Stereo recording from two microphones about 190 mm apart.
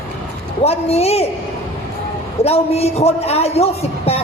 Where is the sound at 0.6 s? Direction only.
35° left (ahead or behind).